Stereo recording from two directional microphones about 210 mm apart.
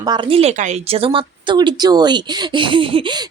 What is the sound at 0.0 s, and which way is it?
Speech, 25° right (ahead or behind).